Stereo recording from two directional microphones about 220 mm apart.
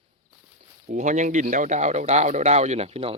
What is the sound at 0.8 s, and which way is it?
Speech, 35° right (ahead or behind).